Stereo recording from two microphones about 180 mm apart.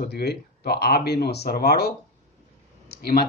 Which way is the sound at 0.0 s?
65° left (ahead or behind).